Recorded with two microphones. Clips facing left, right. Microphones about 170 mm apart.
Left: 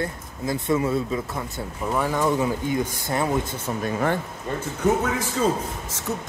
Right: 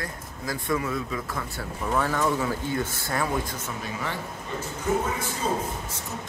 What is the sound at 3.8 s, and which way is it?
Speech, 50° left (ahead or behind).